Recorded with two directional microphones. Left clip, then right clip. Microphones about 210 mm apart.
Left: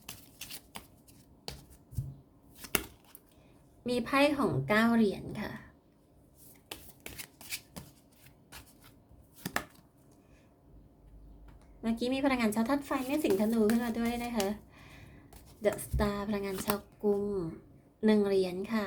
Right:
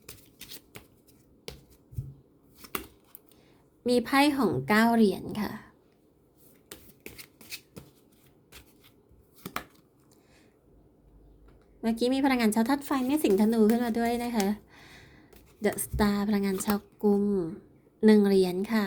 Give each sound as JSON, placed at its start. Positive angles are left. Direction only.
{"t": 2.6, "sound": "a sound", "side_deg": 5}
{"t": 3.8, "sound": "speech", "side_deg": -30}
{"t": 11.8, "sound": "a woman's voice", "side_deg": -25}